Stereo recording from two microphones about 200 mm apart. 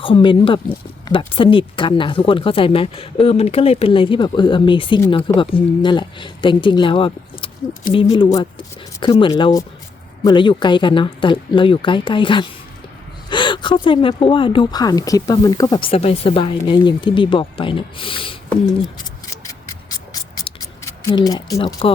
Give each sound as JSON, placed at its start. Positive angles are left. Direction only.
{"t": 0.0, "sound": "speech", "side_deg": 25}
{"t": 20.3, "sound": "mechanisms", "side_deg": 20}